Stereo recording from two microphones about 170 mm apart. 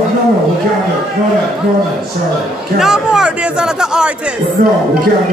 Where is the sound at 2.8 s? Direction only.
5° right (ahead or behind).